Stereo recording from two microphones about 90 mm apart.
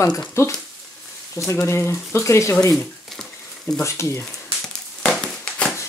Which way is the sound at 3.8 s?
30° left (ahead or behind).